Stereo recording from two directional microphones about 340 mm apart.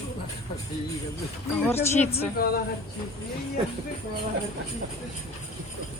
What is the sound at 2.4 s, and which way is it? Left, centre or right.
Speech, left.